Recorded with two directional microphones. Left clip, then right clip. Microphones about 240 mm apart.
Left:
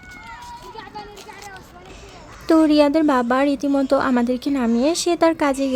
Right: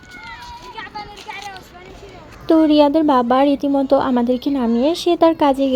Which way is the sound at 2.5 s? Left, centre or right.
Centre.